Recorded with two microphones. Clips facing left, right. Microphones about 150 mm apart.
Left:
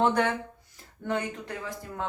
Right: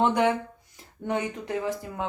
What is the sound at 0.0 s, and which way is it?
Speech, 15° right (ahead or behind).